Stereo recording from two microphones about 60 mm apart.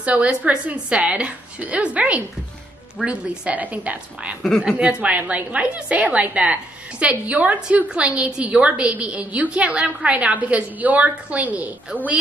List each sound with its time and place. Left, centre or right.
0.0 s a woman's voice: right